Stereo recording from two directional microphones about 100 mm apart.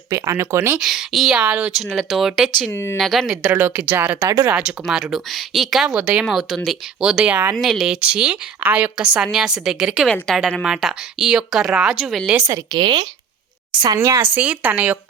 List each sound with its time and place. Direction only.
0.1 s speech: 30° right (ahead or behind)
0.8 s speech: centre (ahead or behind)
1.5 s a woman's voice: 15° right (ahead or behind)
2.0 s speech: centre (ahead or behind)
2.7 s speech: 25° left (ahead or behind)
3.0 s speech: centre (ahead or behind)
3.4 s a woman's voice: 25° right (ahead or behind)
7.5 s a woman's voice: centre (ahead or behind)
10.3 s speech: 5° left (ahead or behind)
12.5 s a woman's voice: 30° right (ahead or behind)
12.8 s speech: 50° right (ahead or behind)
13.8 s speech: 30° right (ahead or behind)
14.3 s a woman's voice: 15° right (ahead or behind)